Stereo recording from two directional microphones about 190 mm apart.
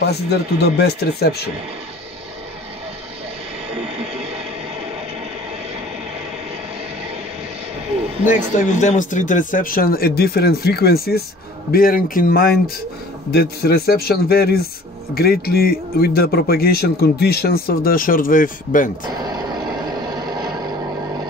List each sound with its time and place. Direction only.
0.0 s speech: 60° left (ahead or behind)
8.5 s a man's voice: 40° left (ahead or behind)
19.0 s vehicle: 20° right (ahead or behind)